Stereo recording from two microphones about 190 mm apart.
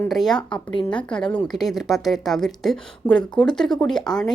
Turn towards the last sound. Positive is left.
turn(degrees=5)  # may be behind; listen again after turning